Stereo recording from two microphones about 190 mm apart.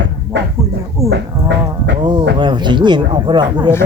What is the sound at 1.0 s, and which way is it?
Speech, 15° right (ahead or behind).